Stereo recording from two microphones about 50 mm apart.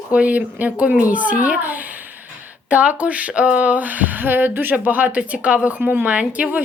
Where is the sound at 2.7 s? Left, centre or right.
Right.